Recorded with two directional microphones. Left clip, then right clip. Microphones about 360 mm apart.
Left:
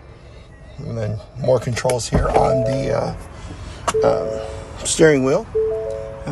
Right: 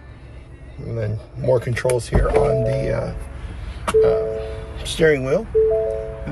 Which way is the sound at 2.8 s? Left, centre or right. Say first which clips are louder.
Left 3 dB; centre.